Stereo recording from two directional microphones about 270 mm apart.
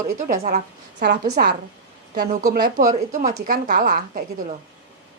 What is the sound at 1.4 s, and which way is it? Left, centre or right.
Speech, right.